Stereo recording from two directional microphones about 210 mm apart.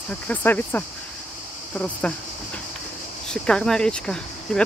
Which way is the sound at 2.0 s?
5° left (ahead or behind).